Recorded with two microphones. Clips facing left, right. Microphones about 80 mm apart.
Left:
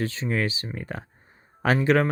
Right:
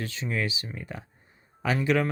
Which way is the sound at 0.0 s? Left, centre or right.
Left.